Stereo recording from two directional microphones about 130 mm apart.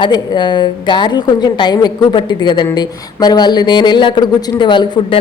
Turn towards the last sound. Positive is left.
turn(degrees=35)  # may be behind; listen again after turning